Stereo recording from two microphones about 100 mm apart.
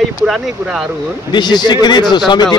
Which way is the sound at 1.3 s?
45° left (ahead or behind).